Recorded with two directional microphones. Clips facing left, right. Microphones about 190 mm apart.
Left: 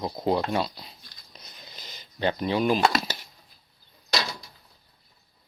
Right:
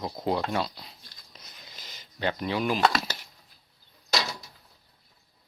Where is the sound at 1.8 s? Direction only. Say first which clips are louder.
Left 3 dB; 25° left (ahead or behind).